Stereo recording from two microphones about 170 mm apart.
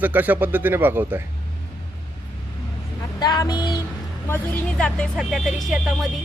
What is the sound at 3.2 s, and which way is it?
Speech, 25° left (ahead or behind).